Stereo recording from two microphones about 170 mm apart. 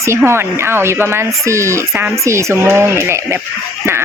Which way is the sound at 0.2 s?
15° right (ahead or behind).